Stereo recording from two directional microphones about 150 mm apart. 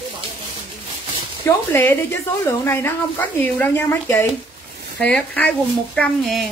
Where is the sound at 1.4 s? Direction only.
15° left (ahead or behind).